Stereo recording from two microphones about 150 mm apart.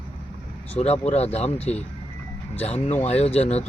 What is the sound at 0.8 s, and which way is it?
Speech, 40° left (ahead or behind).